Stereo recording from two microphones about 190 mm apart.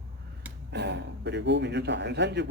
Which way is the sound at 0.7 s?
65° right (ahead or behind).